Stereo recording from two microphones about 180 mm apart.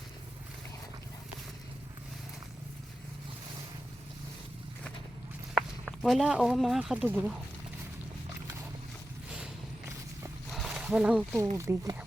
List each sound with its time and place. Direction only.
5.5 s speech: centre (ahead or behind)
10.5 s a sound: centre (ahead or behind)
11.5 s speech: 15° right (ahead or behind)